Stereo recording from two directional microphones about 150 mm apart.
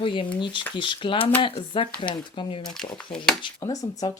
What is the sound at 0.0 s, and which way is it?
Speech, 35° left (ahead or behind).